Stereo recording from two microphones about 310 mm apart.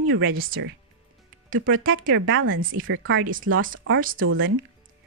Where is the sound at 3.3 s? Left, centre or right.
Right.